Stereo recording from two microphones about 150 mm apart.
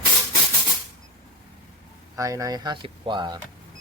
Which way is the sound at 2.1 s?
20° right (ahead or behind).